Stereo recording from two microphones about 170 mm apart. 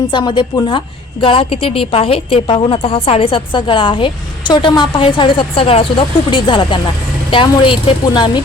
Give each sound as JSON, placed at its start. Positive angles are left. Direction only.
{"t": 0.1, "sound": "a woman's voice", "side_deg": 25}